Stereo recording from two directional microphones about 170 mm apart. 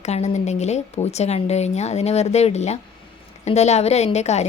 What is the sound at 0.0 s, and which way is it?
A woman's voice, 40° left (ahead or behind).